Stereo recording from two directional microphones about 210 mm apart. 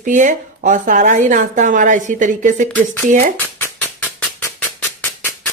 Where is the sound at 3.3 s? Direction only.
10° left (ahead or behind).